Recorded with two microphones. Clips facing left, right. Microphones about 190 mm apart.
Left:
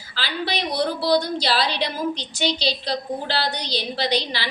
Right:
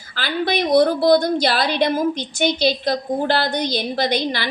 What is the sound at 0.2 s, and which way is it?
A woman's voice, 50° right (ahead or behind).